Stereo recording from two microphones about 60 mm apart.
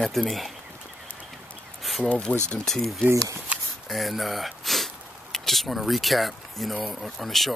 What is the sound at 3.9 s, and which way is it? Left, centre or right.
Speech, centre.